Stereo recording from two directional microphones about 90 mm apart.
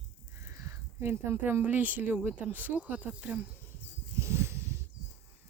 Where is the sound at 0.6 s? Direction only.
25° right (ahead or behind).